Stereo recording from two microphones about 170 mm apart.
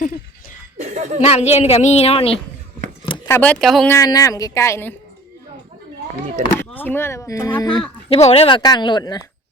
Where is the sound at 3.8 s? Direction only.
20° left (ahead or behind).